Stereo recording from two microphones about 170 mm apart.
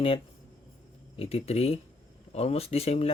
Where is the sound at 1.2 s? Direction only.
35° left (ahead or behind).